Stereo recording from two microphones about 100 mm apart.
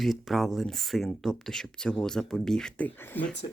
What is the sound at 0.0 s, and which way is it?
Speech, centre (ahead or behind).